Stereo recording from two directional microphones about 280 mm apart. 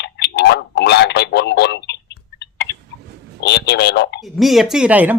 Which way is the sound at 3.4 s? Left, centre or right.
Left.